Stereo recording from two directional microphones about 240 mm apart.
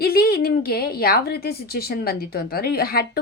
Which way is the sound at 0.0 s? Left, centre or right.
Left.